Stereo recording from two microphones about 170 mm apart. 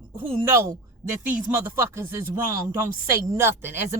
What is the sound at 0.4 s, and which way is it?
Speech, 15° right (ahead or behind).